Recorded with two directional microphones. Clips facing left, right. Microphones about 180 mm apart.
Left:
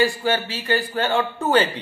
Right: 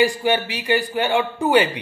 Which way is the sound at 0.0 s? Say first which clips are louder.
Right 2 dB; 15° right (ahead or behind).